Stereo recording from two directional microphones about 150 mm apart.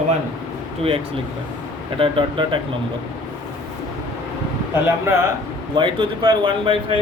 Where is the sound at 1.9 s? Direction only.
35° right (ahead or behind).